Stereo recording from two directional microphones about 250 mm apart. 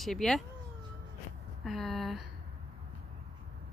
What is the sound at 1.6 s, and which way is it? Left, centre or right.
Speech, centre.